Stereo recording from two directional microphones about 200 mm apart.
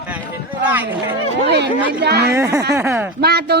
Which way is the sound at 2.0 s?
55° right (ahead or behind).